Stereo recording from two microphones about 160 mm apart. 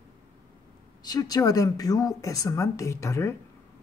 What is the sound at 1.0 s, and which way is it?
Speech, 25° left (ahead or behind).